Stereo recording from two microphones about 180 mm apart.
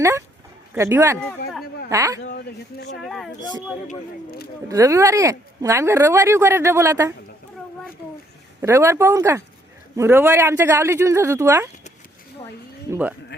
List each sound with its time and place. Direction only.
0.7 s speech: 15° right (ahead or behind)
2.3 s speech: 65° left (ahead or behind)
3.0 s speech: centre (ahead or behind)
4.7 s speech: 15° right (ahead or behind)
8.6 s speech: 15° right (ahead or behind)
12.9 s speech: 10° right (ahead or behind)